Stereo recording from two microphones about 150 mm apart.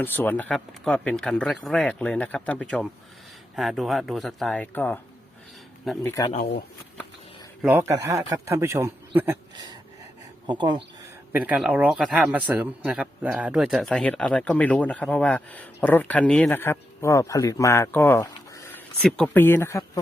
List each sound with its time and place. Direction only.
0.0 s speech: 10° left (ahead or behind)
6.0 s speech: 15° left (ahead or behind)
7.6 s a man's voice: 15° right (ahead or behind)
10.4 s speech: 30° right (ahead or behind)
11.3 s speech: 10° right (ahead or behind); by 18.8 s 20° left (ahead or behind)
19.0 s speech: 5° left (ahead or behind)